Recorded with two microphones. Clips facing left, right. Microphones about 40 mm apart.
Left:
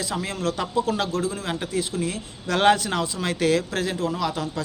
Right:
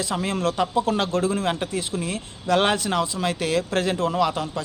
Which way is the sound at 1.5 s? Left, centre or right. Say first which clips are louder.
Even; right.